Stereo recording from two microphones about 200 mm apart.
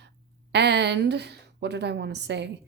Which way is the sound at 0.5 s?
55° right (ahead or behind).